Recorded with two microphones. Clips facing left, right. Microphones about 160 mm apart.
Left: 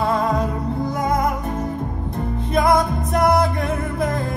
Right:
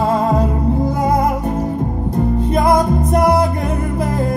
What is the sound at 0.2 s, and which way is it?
Music, 35° right (ahead or behind).